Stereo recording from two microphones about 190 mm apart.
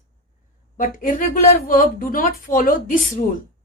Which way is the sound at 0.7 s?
45° left (ahead or behind).